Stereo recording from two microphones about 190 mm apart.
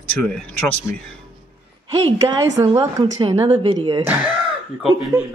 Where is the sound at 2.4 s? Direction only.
20° right (ahead or behind).